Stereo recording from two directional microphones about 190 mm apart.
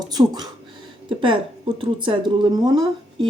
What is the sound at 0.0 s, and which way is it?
Speech, 20° right (ahead or behind).